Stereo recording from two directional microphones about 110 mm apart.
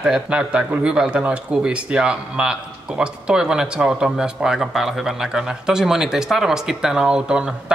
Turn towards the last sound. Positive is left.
turn(degrees=-10)  # may be behind; listen again after turning